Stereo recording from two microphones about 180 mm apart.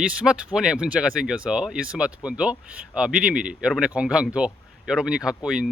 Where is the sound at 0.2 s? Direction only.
5° right (ahead or behind).